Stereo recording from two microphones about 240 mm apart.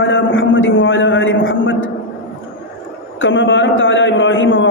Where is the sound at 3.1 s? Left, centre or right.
Left.